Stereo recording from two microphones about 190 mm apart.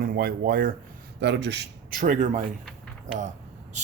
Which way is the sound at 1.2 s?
60° right (ahead or behind).